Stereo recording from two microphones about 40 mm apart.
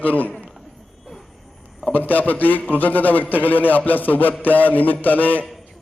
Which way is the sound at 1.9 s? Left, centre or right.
Left.